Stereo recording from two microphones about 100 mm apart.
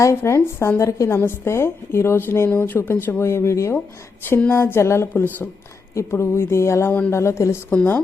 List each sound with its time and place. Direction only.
0.0 s a woman's voice: 30° left (ahead or behind)